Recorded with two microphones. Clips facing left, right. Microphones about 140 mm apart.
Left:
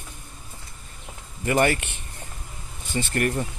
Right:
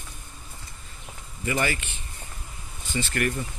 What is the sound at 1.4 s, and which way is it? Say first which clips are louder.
Speech: left 6 dB; 55° left (ahead or behind).